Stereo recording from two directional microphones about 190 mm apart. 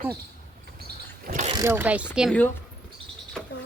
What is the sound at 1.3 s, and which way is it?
Pulleys, 40° right (ahead or behind).